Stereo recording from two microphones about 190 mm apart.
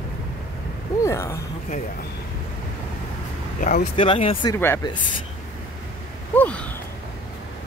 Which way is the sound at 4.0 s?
30° left (ahead or behind).